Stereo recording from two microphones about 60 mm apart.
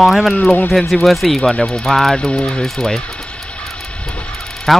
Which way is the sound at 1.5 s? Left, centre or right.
Centre.